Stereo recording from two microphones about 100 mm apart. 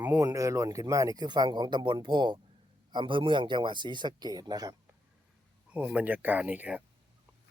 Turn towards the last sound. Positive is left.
turn(degrees=-15)  # may be behind; listen again after turning